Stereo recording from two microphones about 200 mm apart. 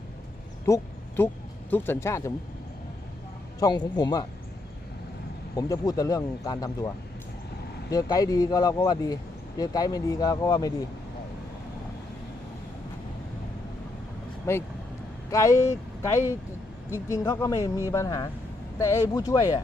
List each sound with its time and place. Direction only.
0.6 s a sound: 10° left (ahead or behind)
1.7 s speech: 10° left (ahead or behind)
3.6 s speech: 20° left (ahead or behind)
5.5 s speech: 15° left (ahead or behind)
14.5 s speech: 15° left (ahead or behind)
17.1 s speech: 15° left (ahead or behind)